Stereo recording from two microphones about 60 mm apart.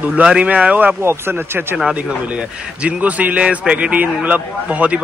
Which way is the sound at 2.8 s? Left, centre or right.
Right.